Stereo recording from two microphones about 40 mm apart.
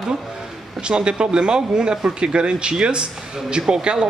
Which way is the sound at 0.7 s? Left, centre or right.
Right.